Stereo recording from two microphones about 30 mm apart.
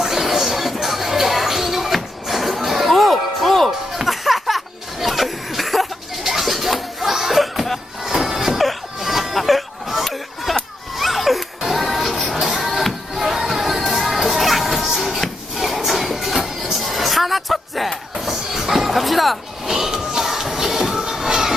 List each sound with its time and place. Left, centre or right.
0.0 s music: centre
8.0 s music: centre
8.5 s a sound: centre
10.4 s music: centre
18.3 s a sound: centre
19.6 s music: centre